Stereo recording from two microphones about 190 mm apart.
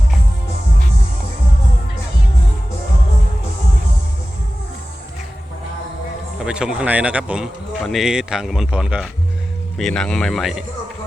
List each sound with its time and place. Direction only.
6.4 s a man's voice: 5° right (ahead or behind)